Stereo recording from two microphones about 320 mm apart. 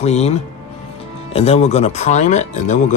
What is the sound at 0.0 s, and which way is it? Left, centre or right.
Speech, centre.